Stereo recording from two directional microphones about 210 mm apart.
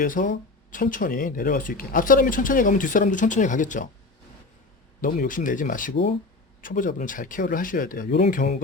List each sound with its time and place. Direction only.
0.0 s speech: 40° left (ahead or behind)
4.9 s speech: 40° left (ahead or behind)